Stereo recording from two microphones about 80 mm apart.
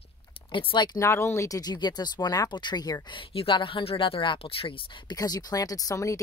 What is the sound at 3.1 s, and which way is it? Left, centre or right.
Speech, left.